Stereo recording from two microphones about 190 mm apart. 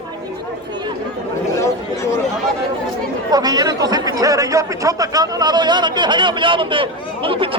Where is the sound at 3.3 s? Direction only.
20° right (ahead or behind).